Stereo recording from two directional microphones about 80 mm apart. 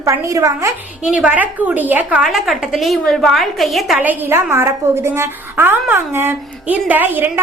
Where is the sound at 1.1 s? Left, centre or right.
Centre.